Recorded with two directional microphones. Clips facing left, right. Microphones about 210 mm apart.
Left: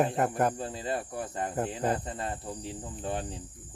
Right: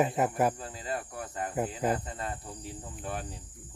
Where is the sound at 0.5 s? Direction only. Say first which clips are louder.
Left 4 dB; 30° left (ahead or behind).